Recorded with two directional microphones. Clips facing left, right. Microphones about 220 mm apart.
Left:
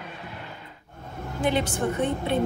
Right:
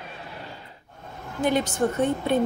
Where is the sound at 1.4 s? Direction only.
40° right (ahead or behind).